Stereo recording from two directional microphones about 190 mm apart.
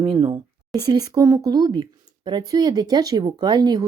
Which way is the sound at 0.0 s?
30° right (ahead or behind).